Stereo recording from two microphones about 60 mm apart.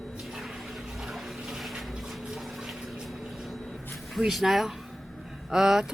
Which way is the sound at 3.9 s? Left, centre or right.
Centre.